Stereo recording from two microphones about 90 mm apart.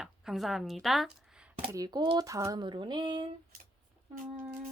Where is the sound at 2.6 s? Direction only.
60° right (ahead or behind).